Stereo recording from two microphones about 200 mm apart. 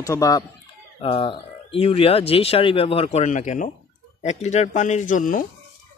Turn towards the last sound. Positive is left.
turn(degrees=40)  # may be behind; listen again after turning